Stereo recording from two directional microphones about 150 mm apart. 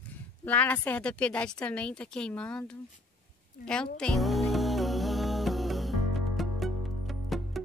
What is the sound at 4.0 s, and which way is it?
Music, centre (ahead or behind).